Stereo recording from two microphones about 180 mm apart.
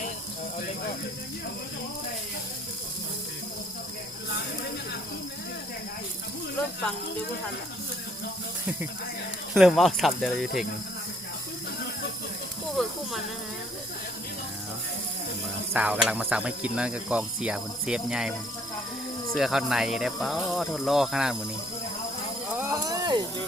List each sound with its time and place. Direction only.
9.6 s speech: centre (ahead or behind)
12.7 s snake: centre (ahead or behind)
15.7 s speech: 5° right (ahead or behind)
19.4 s speech: 5° right (ahead or behind)
22.5 s a sound: 15° right (ahead or behind)